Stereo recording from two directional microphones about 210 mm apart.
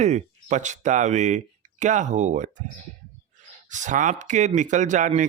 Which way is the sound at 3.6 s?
35° right (ahead or behind).